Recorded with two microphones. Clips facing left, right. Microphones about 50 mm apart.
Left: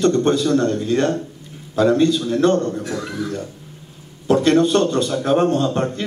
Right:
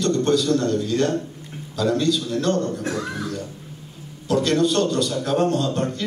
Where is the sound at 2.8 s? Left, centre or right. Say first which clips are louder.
Left 1 dB; right.